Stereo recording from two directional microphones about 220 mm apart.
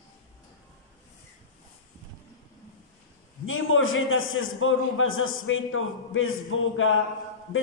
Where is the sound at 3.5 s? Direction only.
65° left (ahead or behind).